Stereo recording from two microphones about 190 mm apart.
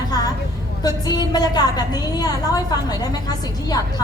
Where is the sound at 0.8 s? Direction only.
20° left (ahead or behind).